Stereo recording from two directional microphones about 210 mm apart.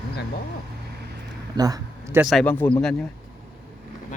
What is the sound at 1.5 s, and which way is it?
Speech, 15° right (ahead or behind).